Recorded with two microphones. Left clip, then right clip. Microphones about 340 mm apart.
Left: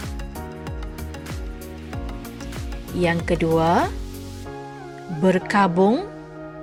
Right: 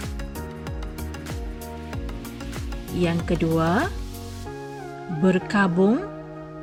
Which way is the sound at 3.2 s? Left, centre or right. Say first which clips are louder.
Left 3 dB; centre.